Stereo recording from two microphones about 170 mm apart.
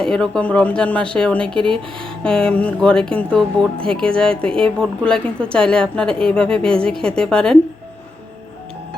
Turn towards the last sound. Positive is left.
turn(degrees=5)  # may be behind; listen again after turning